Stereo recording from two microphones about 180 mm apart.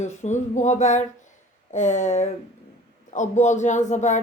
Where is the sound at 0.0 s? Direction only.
40° left (ahead or behind).